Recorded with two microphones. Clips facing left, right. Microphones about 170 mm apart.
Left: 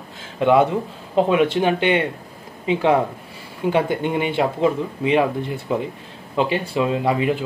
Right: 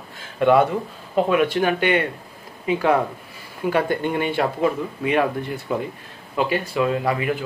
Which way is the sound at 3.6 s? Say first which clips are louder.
Left 1 dB; 15° left (ahead or behind).